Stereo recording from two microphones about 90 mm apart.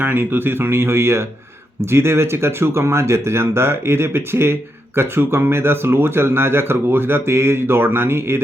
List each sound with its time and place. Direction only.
0.0 s speech: 25° right (ahead or behind)